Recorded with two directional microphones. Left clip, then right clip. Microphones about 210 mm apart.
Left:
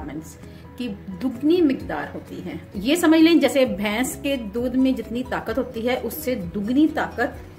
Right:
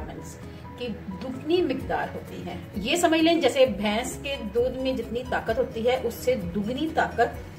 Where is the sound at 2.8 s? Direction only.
50° left (ahead or behind).